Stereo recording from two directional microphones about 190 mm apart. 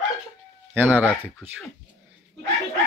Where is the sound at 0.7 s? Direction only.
10° right (ahead or behind).